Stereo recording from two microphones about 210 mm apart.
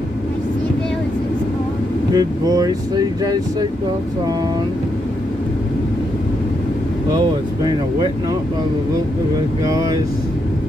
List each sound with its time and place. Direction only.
2.1 s speech: 15° right (ahead or behind)
7.2 s speech: 20° right (ahead or behind)
9.7 s speech: 15° right (ahead or behind)